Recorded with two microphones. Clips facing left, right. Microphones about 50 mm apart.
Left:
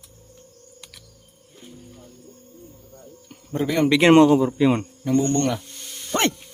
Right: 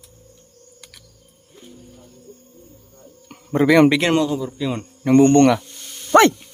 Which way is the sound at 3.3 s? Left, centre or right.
Right.